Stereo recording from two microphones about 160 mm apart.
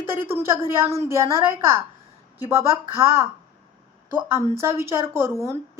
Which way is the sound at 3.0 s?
15° right (ahead or behind).